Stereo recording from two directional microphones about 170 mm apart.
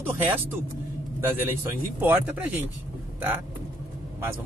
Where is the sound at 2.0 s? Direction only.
10° right (ahead or behind).